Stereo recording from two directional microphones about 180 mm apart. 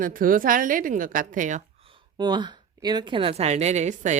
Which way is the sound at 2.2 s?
25° right (ahead or behind).